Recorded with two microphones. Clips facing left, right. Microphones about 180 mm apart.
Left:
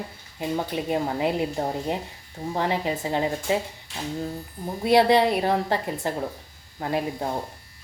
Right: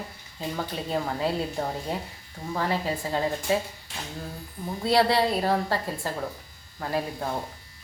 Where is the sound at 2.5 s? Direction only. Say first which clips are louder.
Left 2 dB; 20° left (ahead or behind).